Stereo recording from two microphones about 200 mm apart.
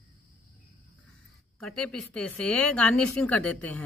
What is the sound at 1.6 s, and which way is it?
Speech, centre (ahead or behind).